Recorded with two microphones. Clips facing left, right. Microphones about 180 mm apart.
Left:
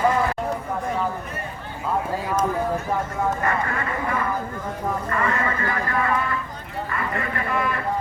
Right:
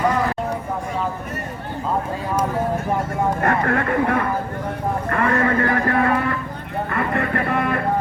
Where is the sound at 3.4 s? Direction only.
60° right (ahead or behind).